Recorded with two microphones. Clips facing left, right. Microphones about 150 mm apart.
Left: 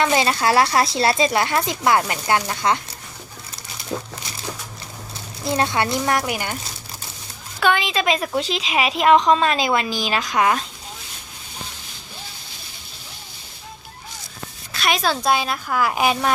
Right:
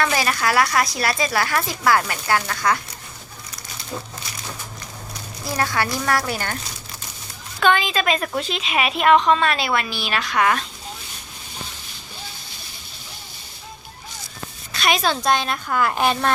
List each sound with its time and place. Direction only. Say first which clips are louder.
0.0 s speech: left 3 dB; 20° left (ahead or behind)
5.5 s speech: left 3 dB; 25° left (ahead or behind)
7.6 s a woman's voice: right 1 dB; 15° left (ahead or behind)
14.7 s speech: even; centre (ahead or behind)